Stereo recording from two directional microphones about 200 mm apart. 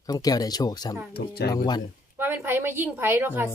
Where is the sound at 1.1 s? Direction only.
50° left (ahead or behind).